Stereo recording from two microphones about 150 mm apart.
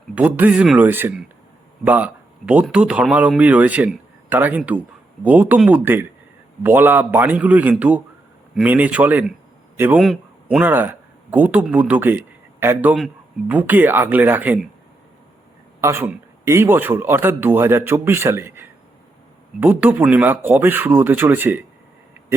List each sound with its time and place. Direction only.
0.1 s a man's voice: 10° right (ahead or behind)
10.0 s a man's voice: centre (ahead or behind)
15.8 s a man's voice: 15° right (ahead or behind)